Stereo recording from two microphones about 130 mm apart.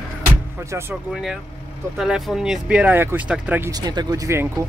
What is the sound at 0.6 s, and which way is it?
Speech, 20° right (ahead or behind).